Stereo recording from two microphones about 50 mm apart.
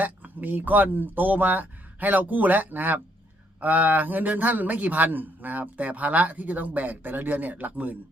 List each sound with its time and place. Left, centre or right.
0.0 s a man's voice: right